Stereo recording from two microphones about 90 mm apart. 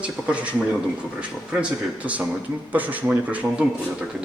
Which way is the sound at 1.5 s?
15° right (ahead or behind).